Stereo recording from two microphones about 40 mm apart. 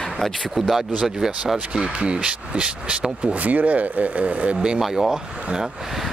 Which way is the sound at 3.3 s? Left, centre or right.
Right.